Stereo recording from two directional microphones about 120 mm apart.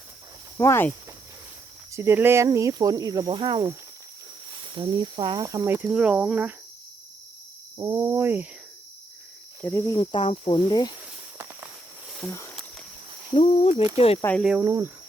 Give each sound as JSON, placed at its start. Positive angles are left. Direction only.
{"t": 0.5, "sound": "speech", "side_deg": 20}
{"t": 1.9, "sound": "speech", "side_deg": -20}
{"t": 4.6, "sound": "speech", "side_deg": -45}
{"t": 5.9, "sound": "speech", "side_deg": -10}
{"t": 7.8, "sound": "speech", "side_deg": -30}
{"t": 9.6, "sound": "speech", "side_deg": 20}
{"t": 10.0, "sound": "speech", "side_deg": 45}
{"t": 10.2, "sound": "cricket", "side_deg": 45}
{"t": 12.2, "sound": "speech", "side_deg": 20}
{"t": 13.4, "sound": "speech", "side_deg": 60}
{"t": 14.4, "sound": "speech", "side_deg": -10}